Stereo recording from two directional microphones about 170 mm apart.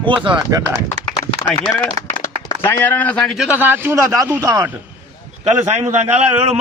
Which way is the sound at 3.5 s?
10° right (ahead or behind).